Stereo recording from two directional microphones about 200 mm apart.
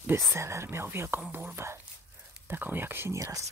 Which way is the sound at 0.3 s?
15° right (ahead or behind).